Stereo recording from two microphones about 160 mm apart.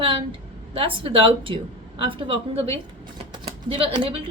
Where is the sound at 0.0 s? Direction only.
35° right (ahead or behind).